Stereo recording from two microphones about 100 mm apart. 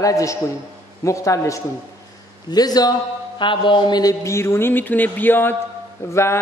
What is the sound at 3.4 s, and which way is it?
Speech, 55° left (ahead or behind).